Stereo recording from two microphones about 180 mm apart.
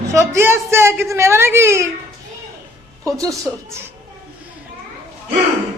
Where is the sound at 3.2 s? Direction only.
15° right (ahead or behind).